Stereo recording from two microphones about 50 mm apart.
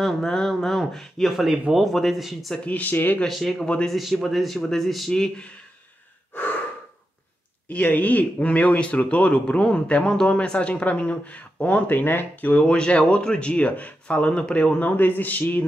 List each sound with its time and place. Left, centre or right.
0.0 s speech: centre
2.6 s speech: left
3.3 s speech: centre
6.3 s gasp: left
7.6 s speech: left
11.9 s speech: left
12.5 s speech: centre
14.8 s speech: left